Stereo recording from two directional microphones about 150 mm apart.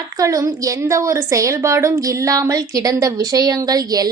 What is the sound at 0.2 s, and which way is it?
A woman's voice, 20° right (ahead or behind).